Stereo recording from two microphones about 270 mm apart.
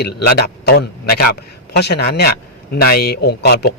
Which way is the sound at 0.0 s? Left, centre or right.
Left.